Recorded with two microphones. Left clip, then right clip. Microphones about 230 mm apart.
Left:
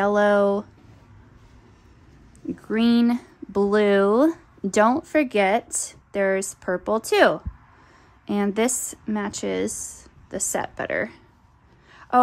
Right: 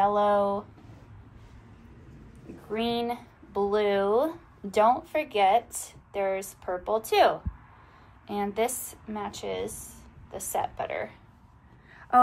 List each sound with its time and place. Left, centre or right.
0.0 s a sound: left
2.7 s speech: left
11.9 s gasp: left